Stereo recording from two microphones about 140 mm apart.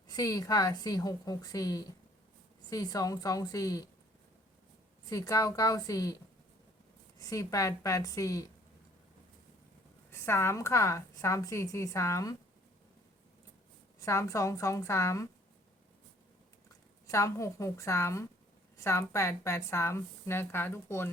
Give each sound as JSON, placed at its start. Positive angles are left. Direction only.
{"t": 0.1, "sound": "a woman's voice", "side_deg": 25}
{"t": 5.0, "sound": "a woman's voice", "side_deg": 25}
{"t": 7.2, "sound": "a woman's voice", "side_deg": 25}
{"t": 10.1, "sound": "a woman's voice", "side_deg": 15}
{"t": 14.0, "sound": "a woman's voice", "side_deg": 20}
{"t": 17.1, "sound": "a woman's voice", "side_deg": 20}